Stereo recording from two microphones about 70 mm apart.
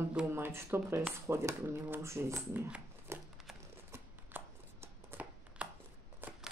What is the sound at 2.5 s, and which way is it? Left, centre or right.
Speech, centre.